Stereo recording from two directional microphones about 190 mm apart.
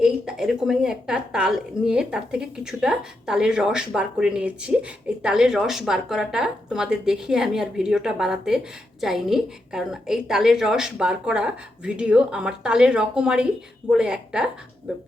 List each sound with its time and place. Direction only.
0.0 s a woman's voice: 5° right (ahead or behind)